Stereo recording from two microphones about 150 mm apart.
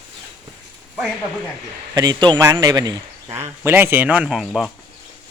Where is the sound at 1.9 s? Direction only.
30° right (ahead or behind); by 4.7 s centre (ahead or behind).